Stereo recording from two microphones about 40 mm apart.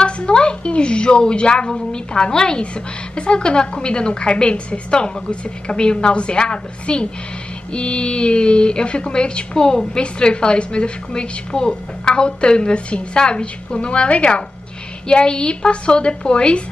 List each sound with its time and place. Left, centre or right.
0.0 s a woman's voice: left